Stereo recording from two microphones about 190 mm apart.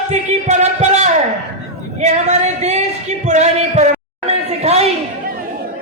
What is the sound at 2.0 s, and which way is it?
Singing, 40° right (ahead or behind).